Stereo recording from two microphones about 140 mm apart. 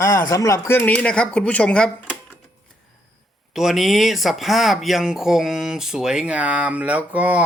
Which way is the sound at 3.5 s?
5° right (ahead or behind).